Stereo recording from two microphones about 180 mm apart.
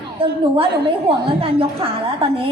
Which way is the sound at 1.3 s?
30° right (ahead or behind).